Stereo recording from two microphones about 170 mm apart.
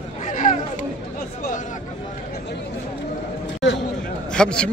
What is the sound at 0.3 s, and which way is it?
Chatter, 45° left (ahead or behind).